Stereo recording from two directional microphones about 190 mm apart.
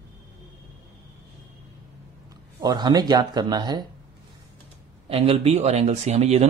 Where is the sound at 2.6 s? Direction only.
20° right (ahead or behind).